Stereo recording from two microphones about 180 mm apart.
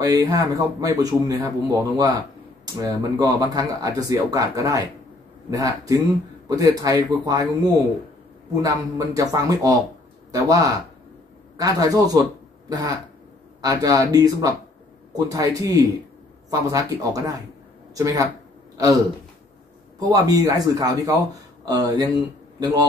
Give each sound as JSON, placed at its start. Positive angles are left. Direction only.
{"t": 0.0, "sound": "a man's voice", "side_deg": -20}
{"t": 20.0, "sound": "speech", "side_deg": -20}